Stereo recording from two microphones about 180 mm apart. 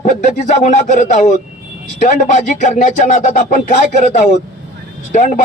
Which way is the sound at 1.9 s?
45° left (ahead or behind).